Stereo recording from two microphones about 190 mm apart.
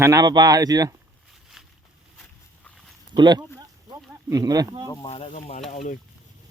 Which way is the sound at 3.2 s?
20° right (ahead or behind).